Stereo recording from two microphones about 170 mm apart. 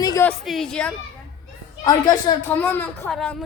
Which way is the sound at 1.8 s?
25° left (ahead or behind).